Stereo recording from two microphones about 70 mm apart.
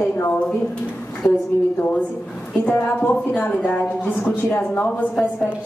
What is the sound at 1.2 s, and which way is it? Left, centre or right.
Speech, left.